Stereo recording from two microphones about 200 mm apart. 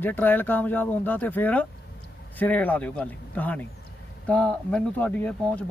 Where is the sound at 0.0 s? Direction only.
10° left (ahead or behind).